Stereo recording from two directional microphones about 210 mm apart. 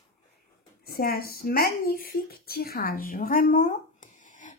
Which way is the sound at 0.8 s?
45° left (ahead or behind).